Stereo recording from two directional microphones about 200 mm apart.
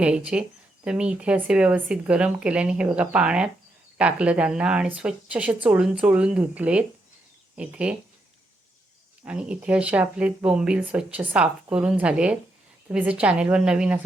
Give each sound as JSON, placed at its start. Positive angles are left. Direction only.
{"t": 0.0, "sound": "speech", "side_deg": -5}
{"t": 9.2, "sound": "speech", "side_deg": -5}